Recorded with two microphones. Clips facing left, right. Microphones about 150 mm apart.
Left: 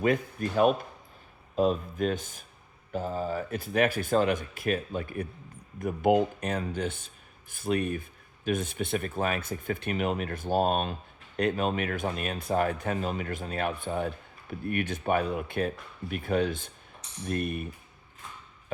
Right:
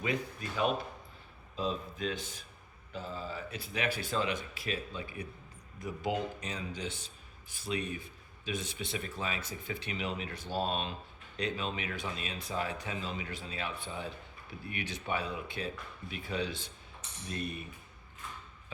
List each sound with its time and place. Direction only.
0.0 s speech: 50° left (ahead or behind)